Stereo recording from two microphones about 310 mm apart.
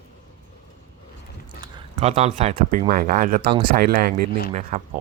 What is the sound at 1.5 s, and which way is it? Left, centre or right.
Speech, centre.